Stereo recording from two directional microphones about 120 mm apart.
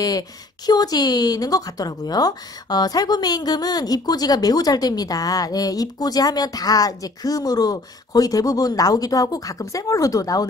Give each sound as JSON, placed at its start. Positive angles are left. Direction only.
{"t": 0.7, "sound": "speech", "side_deg": 35}